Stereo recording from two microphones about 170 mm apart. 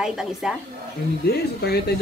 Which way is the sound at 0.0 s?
5° right (ahead or behind).